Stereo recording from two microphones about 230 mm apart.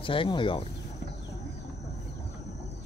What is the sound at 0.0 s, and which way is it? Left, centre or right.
Speech, left.